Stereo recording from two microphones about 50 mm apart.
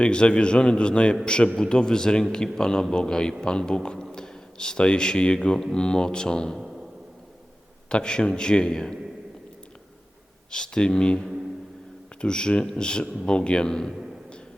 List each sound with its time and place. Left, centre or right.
0.0 s a man's voice: centre
7.9 s a man's voice: centre
10.5 s a man's voice: centre
12.2 s a man's voice: centre